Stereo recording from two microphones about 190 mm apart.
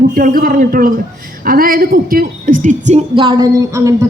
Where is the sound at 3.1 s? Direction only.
25° right (ahead or behind).